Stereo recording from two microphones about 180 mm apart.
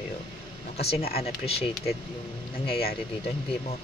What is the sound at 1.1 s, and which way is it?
Speech, 35° left (ahead or behind).